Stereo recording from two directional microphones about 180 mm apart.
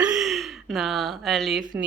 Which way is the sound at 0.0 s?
5° right (ahead or behind).